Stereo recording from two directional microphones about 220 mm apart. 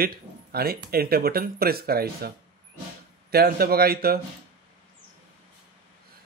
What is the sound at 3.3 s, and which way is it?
Speech, 45° right (ahead or behind).